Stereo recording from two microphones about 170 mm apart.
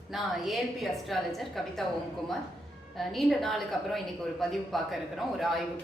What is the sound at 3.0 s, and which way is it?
A woman's voice, centre (ahead or behind).